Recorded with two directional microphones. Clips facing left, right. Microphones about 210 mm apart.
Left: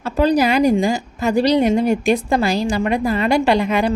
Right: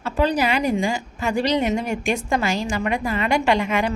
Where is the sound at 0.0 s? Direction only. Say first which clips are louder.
Left 5 dB; 40° left (ahead or behind).